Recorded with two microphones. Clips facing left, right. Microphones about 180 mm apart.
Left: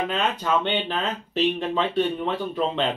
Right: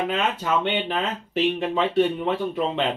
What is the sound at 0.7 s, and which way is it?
Speech, 10° right (ahead or behind).